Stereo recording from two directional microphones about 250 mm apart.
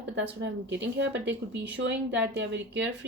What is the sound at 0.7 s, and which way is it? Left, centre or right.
Speech, right.